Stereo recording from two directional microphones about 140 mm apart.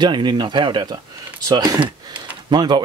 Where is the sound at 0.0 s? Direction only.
30° right (ahead or behind).